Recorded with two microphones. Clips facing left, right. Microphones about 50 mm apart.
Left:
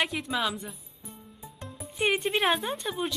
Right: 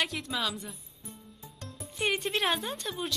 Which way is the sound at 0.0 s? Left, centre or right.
Centre.